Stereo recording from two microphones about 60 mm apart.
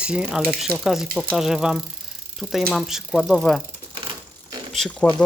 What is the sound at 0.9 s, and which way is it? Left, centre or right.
Speech, centre.